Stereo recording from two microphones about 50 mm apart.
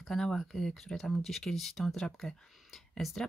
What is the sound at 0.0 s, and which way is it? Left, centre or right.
Speech, centre.